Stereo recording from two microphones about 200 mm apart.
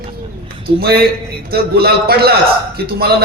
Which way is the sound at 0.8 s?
50° right (ahead or behind).